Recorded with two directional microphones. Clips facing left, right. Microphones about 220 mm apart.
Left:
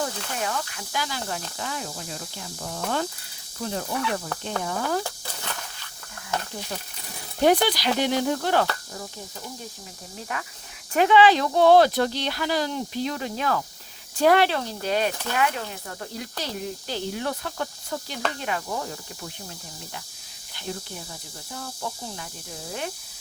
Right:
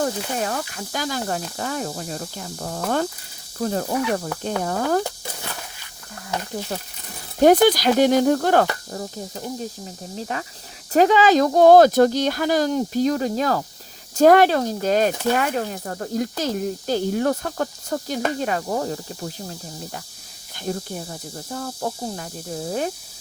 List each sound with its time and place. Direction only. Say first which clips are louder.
0.0 s speech: right 6 dB; 40° right (ahead or behind)
7.4 s speech: right 6 dB; 45° right (ahead or behind)